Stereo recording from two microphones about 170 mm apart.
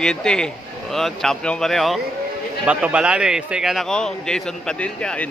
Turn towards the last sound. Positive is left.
turn(degrees=5)  # may be behind; listen again after turning